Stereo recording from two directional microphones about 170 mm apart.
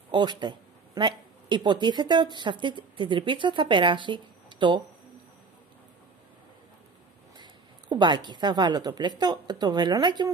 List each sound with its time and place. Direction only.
0.1 s speech: 25° right (ahead or behind)
7.9 s a woman's voice: 25° right (ahead or behind)